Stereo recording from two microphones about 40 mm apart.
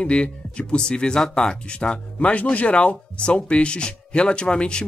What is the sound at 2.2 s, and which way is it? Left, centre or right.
Speech, left.